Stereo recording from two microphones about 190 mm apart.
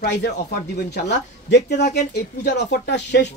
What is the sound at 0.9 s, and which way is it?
Speech, 60° left (ahead or behind).